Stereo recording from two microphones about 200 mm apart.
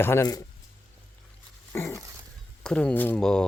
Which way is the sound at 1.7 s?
15° left (ahead or behind).